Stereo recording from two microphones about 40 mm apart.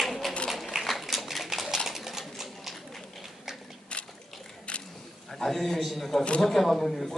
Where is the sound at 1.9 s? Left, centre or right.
Centre.